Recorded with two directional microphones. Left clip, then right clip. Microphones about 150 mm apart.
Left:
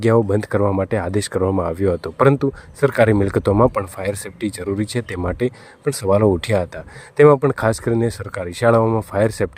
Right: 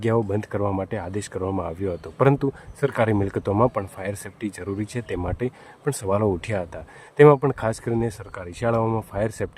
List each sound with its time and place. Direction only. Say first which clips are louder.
0.0 s speech: left 7 dB; 30° left (ahead or behind)
8.8 s speech: left 6 dB; 25° left (ahead or behind)
9.1 s speech: left 8 dB; 35° left (ahead or behind)